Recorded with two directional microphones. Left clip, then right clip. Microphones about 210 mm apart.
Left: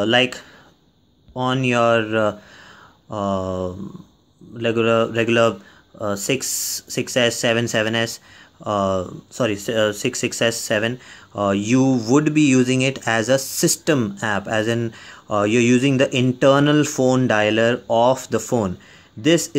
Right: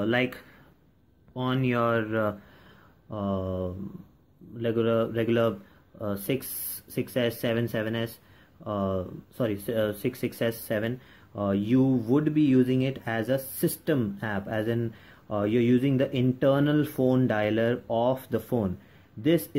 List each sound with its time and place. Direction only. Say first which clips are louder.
0.0 s speech: left 9 dB; 20° left (ahead or behind)